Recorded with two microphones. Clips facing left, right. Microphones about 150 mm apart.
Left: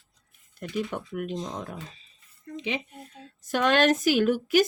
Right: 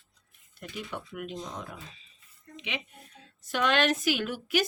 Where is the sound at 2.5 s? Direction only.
35° left (ahead or behind).